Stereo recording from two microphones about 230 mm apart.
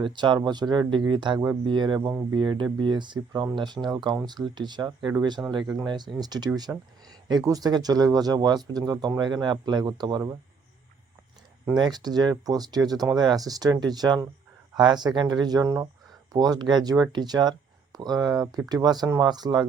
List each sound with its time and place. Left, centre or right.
0.0 s speech: centre
11.8 s speech: centre